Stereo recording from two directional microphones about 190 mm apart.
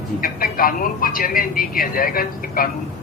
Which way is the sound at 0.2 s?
50° left (ahead or behind).